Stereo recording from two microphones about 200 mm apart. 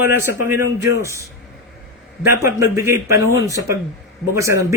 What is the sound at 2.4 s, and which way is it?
A man's voice, 15° right (ahead or behind).